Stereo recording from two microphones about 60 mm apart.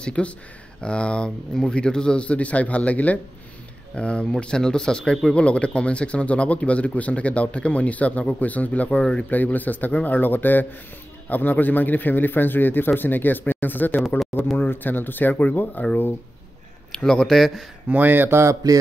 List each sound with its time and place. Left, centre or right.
0.0 s a man's voice: centre
16.9 s speech: centre
17.8 s speech: right
18.6 s a sound: right